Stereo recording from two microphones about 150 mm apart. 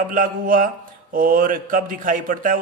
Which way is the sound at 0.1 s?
65° right (ahead or behind).